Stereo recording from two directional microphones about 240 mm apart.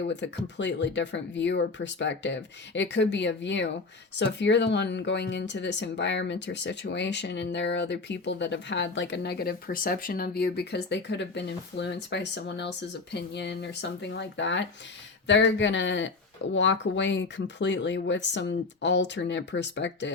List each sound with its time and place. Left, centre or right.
0.1 s speech: left